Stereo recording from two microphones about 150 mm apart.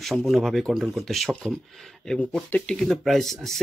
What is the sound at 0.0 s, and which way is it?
Speech, centre (ahead or behind).